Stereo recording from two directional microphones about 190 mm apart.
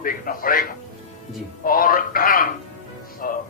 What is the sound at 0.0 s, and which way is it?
Speech, 50° left (ahead or behind).